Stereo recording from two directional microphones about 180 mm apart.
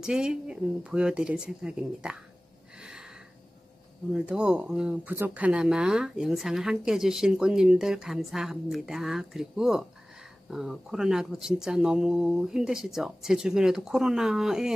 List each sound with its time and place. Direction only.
0.0 s speech: 5° right (ahead or behind)
2.8 s a sound: 5° right (ahead or behind)
4.1 s speech: 5° right (ahead or behind)